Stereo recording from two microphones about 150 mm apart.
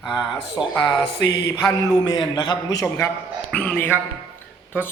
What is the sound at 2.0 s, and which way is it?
Speech, 30° left (ahead or behind).